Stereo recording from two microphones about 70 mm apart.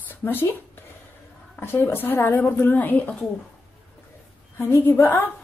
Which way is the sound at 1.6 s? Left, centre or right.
Left.